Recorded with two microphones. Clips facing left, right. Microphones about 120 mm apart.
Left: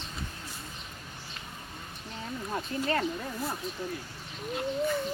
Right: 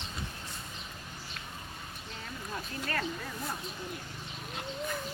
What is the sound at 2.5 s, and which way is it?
Speech, 25° left (ahead or behind).